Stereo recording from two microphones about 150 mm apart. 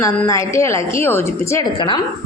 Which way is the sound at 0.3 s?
20° left (ahead or behind).